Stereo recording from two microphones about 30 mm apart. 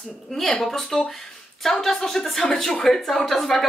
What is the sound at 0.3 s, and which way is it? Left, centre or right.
A woman's voice, centre.